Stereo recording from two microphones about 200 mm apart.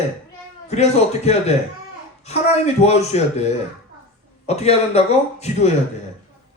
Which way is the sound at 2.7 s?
30° left (ahead or behind).